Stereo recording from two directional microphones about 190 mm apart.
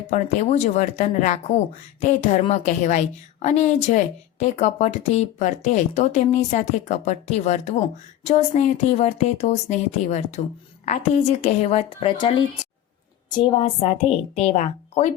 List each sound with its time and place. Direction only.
0.1 s a woman's voice: 40° left (ahead or behind)
13.8 s a woman's voice: 35° left (ahead or behind)